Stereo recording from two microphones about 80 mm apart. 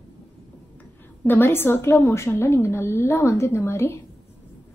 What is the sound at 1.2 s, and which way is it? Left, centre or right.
A woman's voice, left.